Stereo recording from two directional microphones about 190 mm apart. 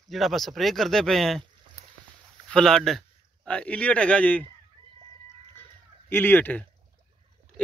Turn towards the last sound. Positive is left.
turn(degrees=10)  # may be behind; listen again after turning